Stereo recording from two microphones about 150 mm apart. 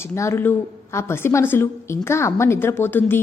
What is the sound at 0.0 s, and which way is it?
A woman's voice, 15° left (ahead or behind).